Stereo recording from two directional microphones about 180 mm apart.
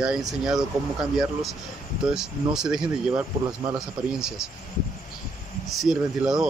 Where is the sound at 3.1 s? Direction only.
15° right (ahead or behind).